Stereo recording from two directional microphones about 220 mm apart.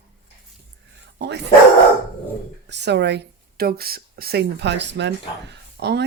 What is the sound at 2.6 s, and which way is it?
Speech, 50° right (ahead or behind).